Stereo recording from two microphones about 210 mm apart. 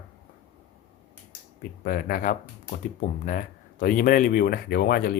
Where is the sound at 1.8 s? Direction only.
45° left (ahead or behind).